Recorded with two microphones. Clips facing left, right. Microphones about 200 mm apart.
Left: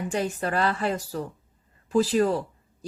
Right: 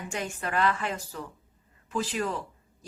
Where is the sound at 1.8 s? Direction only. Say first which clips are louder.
Left 9 dB; 35° left (ahead or behind).